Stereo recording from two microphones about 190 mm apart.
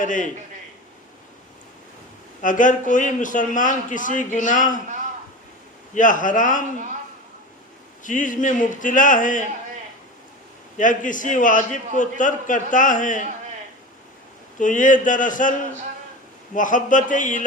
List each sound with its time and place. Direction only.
0.0 s a man's voice: 45° left (ahead or behind)
2.4 s a man's voice: 45° left (ahead or behind)
5.9 s a man's voice: 45° left (ahead or behind)
8.0 s a man's voice: 45° left (ahead or behind)
10.8 s a man's voice: 45° left (ahead or behind)
14.6 s a man's voice: 45° left (ahead or behind)
16.6 s a man's voice: 45° left (ahead or behind)